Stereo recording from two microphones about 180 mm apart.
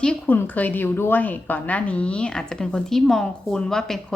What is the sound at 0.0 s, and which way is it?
A woman's voice, 10° left (ahead or behind).